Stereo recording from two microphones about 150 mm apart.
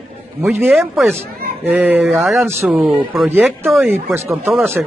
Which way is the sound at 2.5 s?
15° right (ahead or behind).